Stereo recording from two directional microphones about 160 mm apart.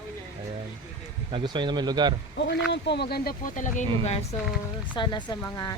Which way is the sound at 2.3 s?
90° left.